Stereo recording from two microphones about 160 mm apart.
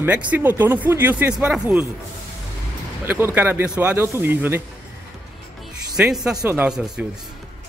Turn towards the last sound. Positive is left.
turn(degrees=-5)  # may be behind; listen again after turning